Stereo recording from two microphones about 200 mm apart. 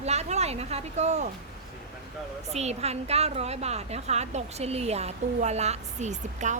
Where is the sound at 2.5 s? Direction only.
35° right (ahead or behind).